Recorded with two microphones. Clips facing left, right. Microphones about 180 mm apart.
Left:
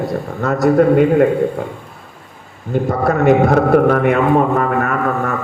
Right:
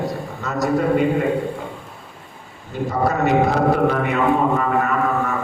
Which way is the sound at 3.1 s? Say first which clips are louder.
Left 6 dB; 55° left (ahead or behind).